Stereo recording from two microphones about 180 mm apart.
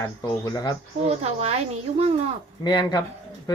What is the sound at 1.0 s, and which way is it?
A woman's voice, 35° right (ahead or behind).